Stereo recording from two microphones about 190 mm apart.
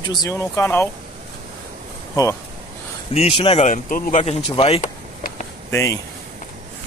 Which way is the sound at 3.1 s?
30° left (ahead or behind).